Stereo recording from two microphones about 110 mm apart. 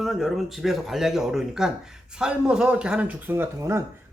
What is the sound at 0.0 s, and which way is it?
Speech, centre (ahead or behind).